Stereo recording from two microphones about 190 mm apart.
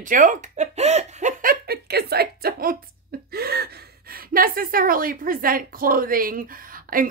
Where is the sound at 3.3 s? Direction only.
55° right (ahead or behind).